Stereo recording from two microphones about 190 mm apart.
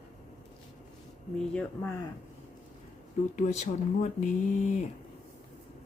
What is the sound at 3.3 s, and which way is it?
Speech, 40° left (ahead or behind).